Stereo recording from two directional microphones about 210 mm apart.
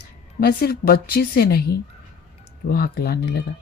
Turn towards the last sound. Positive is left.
turn(degrees=50)  # may be behind; listen again after turning